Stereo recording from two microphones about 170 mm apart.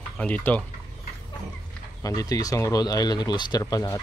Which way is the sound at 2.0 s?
20° left (ahead or behind).